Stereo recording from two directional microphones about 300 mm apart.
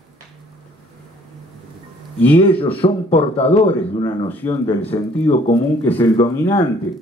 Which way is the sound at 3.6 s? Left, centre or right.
Centre.